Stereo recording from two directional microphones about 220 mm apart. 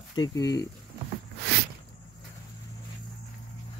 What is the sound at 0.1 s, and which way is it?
Speech, 20° left (ahead or behind).